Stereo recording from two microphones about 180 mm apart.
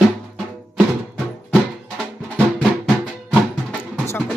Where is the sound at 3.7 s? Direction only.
5° left (ahead or behind).